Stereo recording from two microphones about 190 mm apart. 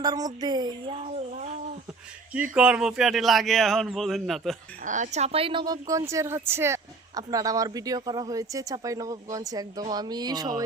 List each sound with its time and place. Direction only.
0.0 s speech: 20° right (ahead or behind)
0.9 s a sound: 35° right (ahead or behind)
2.6 s speech: 5° right (ahead or behind)
4.9 s speech: 40° right (ahead or behind); by 10.5 s 20° right (ahead or behind)